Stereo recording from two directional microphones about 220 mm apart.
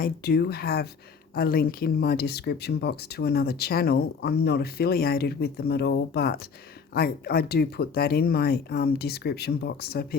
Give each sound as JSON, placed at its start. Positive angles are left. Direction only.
{"t": 0.0, "sound": "speech", "side_deg": 45}